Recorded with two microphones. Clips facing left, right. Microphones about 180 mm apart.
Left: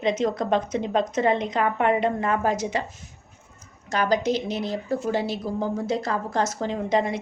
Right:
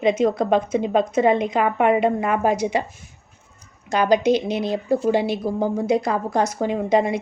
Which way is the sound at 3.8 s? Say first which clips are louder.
Right 5 dB; 15° right (ahead or behind).